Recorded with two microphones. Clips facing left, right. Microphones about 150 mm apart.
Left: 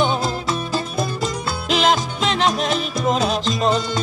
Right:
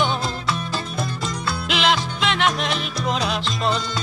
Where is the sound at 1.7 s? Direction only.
40° left (ahead or behind).